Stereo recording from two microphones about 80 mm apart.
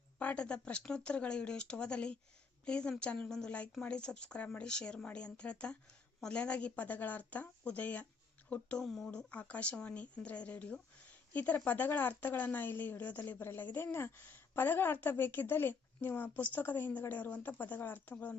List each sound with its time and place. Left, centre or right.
0.2 s speech: centre
8.8 s speech: centre
9.0 s speech: centre